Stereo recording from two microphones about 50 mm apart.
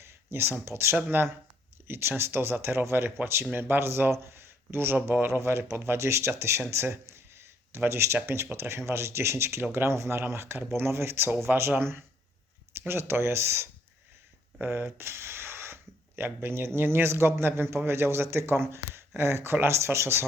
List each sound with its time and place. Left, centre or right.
0.0 s a sound: right
0.9 s speech: right
1.9 s speech: right
6.7 s a sound: right
7.8 s speech: right
14.8 s speech: right